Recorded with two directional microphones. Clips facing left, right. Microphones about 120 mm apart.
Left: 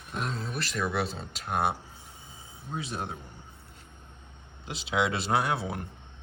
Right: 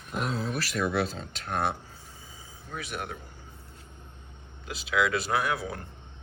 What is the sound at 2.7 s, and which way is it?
Speech, 30° left (ahead or behind).